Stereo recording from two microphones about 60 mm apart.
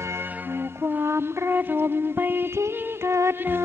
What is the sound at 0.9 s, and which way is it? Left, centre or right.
Music, right.